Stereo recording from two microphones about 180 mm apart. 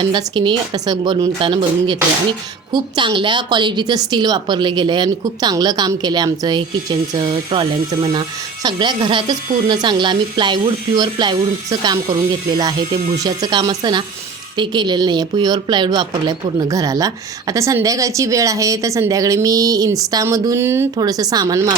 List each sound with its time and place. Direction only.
0.0 s a woman's voice: 25° right (ahead or behind)
12.5 s a woman's voice: 25° right (ahead or behind)